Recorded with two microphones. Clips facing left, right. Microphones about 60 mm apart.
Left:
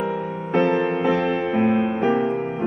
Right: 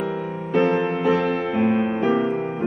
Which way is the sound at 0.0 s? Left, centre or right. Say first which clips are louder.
Left 1 dB; centre.